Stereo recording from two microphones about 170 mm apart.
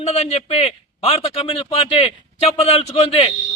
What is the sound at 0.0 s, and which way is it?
Speech, 40° left (ahead or behind).